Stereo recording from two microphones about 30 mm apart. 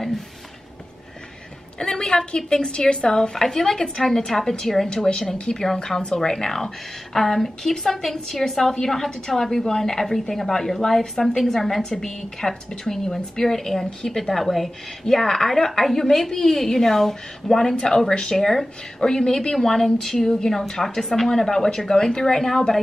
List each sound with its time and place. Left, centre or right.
1.8 s a woman's voice: left
4.8 s a woman's voice: left